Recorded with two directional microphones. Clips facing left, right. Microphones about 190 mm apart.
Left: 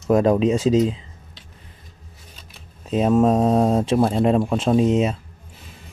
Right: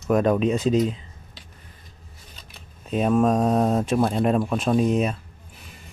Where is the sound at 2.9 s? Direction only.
25° left (ahead or behind).